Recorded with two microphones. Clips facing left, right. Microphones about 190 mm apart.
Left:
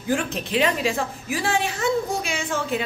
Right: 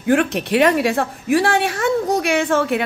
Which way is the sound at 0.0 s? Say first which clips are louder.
Right 8 dB; 65° right (ahead or behind).